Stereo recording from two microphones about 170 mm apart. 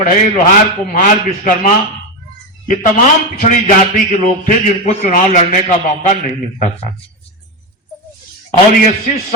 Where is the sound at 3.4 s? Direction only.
50° left (ahead or behind).